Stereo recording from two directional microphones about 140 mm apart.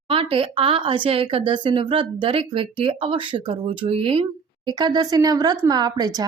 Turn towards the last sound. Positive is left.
turn(degrees=-25)  # may be behind; listen again after turning